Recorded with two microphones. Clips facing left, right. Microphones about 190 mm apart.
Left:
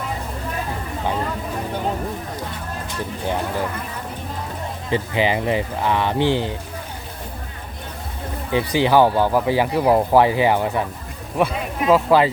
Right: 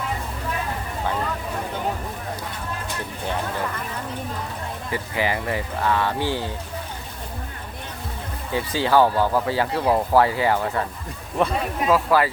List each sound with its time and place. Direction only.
4.9 s speech: 20° left (ahead or behind)
8.5 s speech: 15° left (ahead or behind)